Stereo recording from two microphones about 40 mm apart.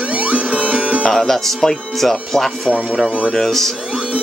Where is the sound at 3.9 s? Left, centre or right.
Right.